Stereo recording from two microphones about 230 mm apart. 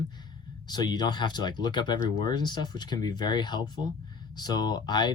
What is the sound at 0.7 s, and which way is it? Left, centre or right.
Speech, centre.